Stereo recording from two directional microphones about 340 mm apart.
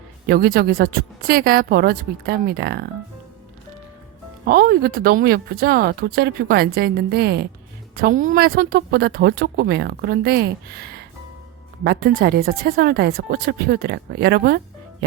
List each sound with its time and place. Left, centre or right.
0.3 s speech: right
4.4 s speech: right